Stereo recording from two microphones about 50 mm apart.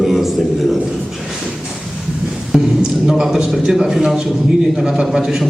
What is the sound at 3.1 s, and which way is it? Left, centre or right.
A man's voice, centre.